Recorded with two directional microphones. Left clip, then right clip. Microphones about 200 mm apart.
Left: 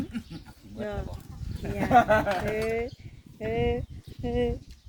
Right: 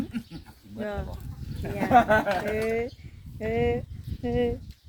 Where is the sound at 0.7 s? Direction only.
10° right (ahead or behind).